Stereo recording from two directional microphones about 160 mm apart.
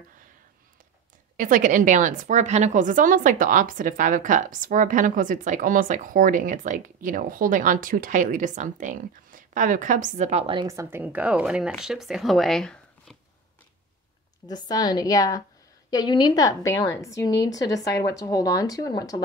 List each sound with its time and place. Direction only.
1.3 s a woman's voice: 55° right (ahead or behind); by 10.7 s 35° right (ahead or behind)
10.7 s speech: 15° right (ahead or behind); by 13.2 s 5° left (ahead or behind)
14.5 s a woman's voice: 25° left (ahead or behind)